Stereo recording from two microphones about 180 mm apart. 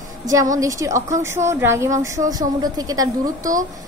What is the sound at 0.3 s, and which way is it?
A woman's voice, 20° right (ahead or behind).